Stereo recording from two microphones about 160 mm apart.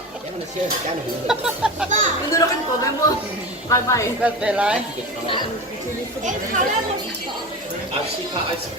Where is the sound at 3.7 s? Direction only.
20° left (ahead or behind).